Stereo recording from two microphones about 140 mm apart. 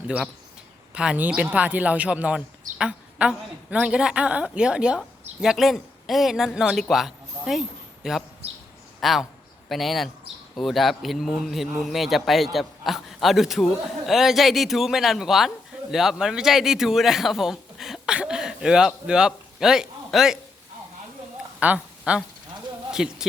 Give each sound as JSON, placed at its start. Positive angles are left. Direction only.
{"t": 0.9, "sound": "a woman's voice", "side_deg": -10}
{"t": 8.4, "sound": "a man's voice", "side_deg": -45}
{"t": 9.0, "sound": "a man's voice", "side_deg": 0}
{"t": 21.6, "sound": "a sound", "side_deg": -10}
{"t": 22.9, "sound": "speech", "side_deg": -5}